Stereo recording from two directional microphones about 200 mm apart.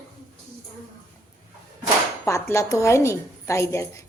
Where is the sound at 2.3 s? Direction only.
15° left (ahead or behind).